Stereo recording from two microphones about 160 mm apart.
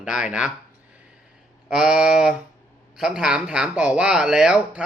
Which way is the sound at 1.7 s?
5° right (ahead or behind).